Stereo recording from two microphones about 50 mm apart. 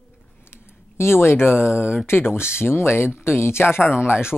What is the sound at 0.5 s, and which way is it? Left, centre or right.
Speech, left.